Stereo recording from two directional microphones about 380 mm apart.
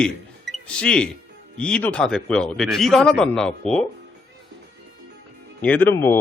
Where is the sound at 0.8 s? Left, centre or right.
Centre.